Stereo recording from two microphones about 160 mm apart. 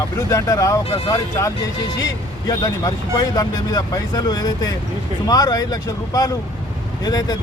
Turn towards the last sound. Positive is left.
turn(degrees=25)  # may be behind; listen again after turning